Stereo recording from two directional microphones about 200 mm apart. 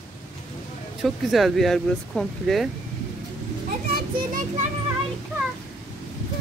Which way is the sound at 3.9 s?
45° right (ahead or behind).